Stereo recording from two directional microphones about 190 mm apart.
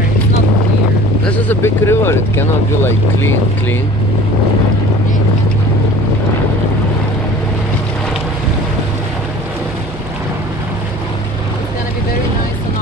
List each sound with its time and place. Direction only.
1.2 s speech: 10° left (ahead or behind)